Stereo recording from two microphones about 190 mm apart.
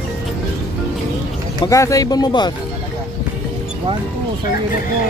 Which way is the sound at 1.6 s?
15° left (ahead or behind).